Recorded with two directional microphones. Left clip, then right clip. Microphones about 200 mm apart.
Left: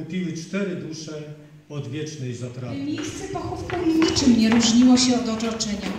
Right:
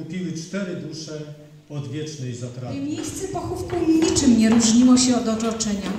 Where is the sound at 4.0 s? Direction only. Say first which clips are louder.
Even; 90° right.